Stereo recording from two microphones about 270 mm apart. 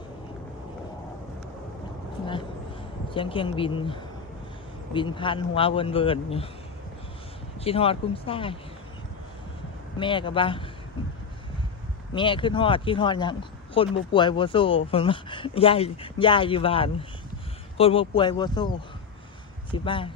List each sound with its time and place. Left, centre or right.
3.2 s speech: centre
7.6 s speech: left
10.0 s speech: centre
12.1 s speech: centre
19.7 s speech: centre